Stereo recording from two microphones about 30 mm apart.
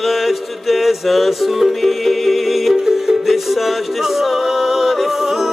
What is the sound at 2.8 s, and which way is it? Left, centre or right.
Music, centre.